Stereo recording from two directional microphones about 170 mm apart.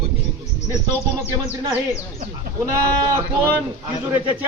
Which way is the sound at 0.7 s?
10° right (ahead or behind).